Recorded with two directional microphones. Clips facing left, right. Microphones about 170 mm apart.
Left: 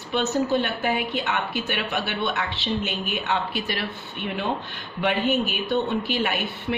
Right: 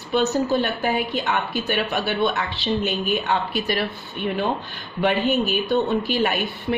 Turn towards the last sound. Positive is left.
turn(degrees=-40)  # may be behind; listen again after turning